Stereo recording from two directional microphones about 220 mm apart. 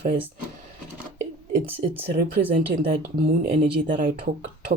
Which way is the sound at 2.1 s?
45° right (ahead or behind).